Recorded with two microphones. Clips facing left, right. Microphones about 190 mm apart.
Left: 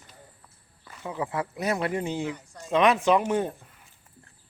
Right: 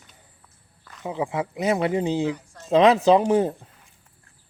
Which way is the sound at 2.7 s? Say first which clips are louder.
Right 5 dB; 30° right (ahead or behind).